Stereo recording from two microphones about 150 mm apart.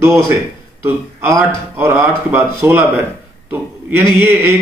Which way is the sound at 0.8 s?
15° right (ahead or behind).